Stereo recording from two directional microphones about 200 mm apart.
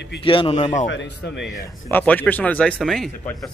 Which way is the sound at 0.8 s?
65° left (ahead or behind).